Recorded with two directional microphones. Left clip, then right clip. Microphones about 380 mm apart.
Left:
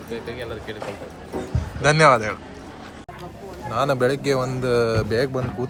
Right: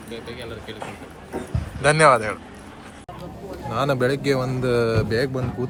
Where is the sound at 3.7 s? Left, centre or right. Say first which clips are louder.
Left 1 dB; centre.